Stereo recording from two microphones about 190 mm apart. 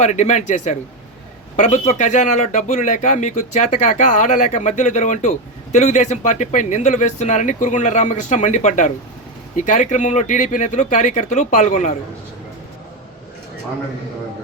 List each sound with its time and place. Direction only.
0.0 s speech: 40° left (ahead or behind)